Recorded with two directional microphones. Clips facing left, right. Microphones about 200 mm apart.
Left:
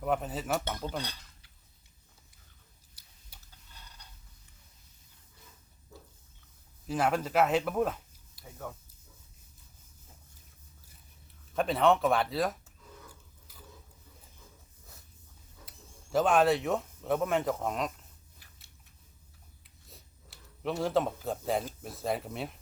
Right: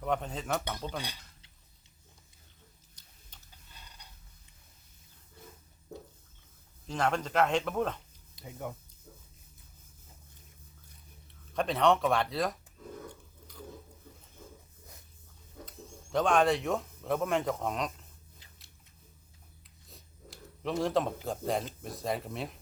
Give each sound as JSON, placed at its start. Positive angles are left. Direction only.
{"t": 0.0, "sound": "speech", "side_deg": 5}
{"t": 2.9, "sound": "tick-tock", "side_deg": 10}
{"t": 6.8, "sound": "speech", "side_deg": 5}
{"t": 8.4, "sound": "speech", "side_deg": -15}
{"t": 11.5, "sound": "speech", "side_deg": 0}
{"t": 13.5, "sound": "a sound", "side_deg": 5}
{"t": 16.1, "sound": "speech", "side_deg": 5}
{"t": 18.4, "sound": "biting", "side_deg": -20}
{"t": 19.6, "sound": "a sound", "side_deg": 0}
{"t": 21.2, "sound": "speech", "side_deg": 0}